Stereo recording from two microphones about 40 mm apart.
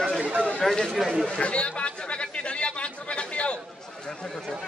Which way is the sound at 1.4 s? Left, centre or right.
Left.